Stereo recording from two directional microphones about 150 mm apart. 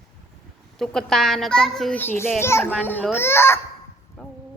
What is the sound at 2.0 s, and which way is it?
A woman's voice, 15° left (ahead or behind).